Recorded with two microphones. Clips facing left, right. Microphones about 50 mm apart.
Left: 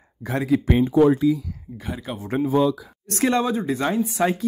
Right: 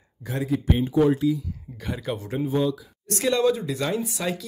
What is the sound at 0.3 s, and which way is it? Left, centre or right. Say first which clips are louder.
Speech: left 5 dB; left.